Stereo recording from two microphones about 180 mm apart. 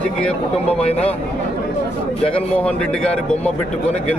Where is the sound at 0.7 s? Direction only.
5° left (ahead or behind).